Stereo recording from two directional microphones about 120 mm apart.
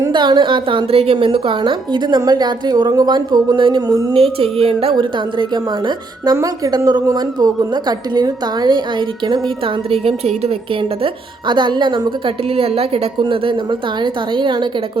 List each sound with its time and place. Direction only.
0.1 s a woman's voice: 40° right (ahead or behind)
4.1 s a woman's voice: 50° right (ahead or behind)
9.9 s a woman's voice: 55° right (ahead or behind)
11.0 s a woman's voice: 40° right (ahead or behind)